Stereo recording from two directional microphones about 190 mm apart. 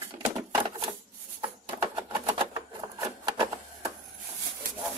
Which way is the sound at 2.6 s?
20° right (ahead or behind).